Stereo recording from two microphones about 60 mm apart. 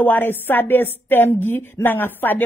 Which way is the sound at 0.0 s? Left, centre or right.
Left.